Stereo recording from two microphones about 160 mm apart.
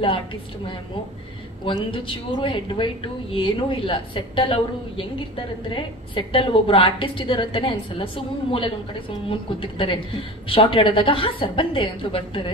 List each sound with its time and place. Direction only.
1.7 s a woman's voice: 35° left (ahead or behind)